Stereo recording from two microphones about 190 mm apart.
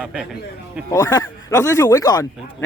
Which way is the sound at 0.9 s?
15° left (ahead or behind).